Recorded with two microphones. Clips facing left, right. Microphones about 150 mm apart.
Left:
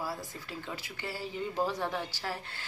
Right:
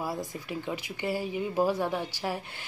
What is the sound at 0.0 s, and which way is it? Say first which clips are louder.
Speech: right 4 dB; 15° right (ahead or behind).